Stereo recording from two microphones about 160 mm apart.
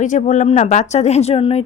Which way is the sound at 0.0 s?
50° left (ahead or behind).